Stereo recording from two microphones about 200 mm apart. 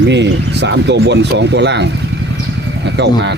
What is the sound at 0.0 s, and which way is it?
Speech, 60° right (ahead or behind).